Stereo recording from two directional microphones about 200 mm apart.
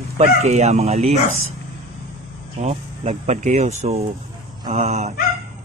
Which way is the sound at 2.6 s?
35° right (ahead or behind).